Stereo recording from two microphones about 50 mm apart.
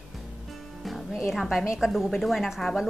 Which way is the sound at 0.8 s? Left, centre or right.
Centre.